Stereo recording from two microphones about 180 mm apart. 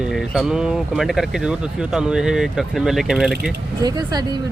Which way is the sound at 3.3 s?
60° right (ahead or behind).